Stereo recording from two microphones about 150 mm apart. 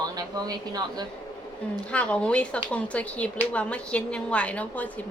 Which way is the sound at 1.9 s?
10° left (ahead or behind).